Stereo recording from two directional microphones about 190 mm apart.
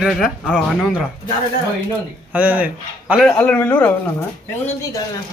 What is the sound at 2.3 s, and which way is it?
A man's voice, 10° right (ahead or behind).